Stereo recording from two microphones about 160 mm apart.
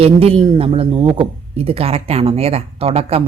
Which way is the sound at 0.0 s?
40° right (ahead or behind).